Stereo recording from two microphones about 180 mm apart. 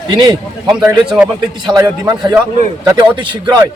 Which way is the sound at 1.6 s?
20° right (ahead or behind).